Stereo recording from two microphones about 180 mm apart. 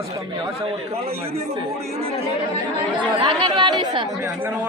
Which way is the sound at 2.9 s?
25° right (ahead or behind).